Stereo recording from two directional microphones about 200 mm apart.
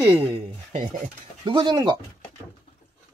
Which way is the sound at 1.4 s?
25° right (ahead or behind).